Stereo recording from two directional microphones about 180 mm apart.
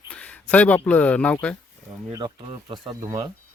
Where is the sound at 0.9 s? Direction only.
10° left (ahead or behind).